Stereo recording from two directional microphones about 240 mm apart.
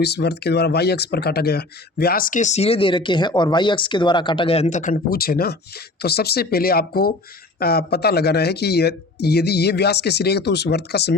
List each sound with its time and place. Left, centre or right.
0.0 s speech: left